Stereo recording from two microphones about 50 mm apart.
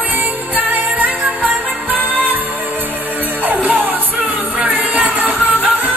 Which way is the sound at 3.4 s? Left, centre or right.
Right.